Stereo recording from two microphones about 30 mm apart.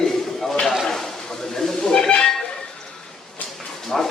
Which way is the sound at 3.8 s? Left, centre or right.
Centre.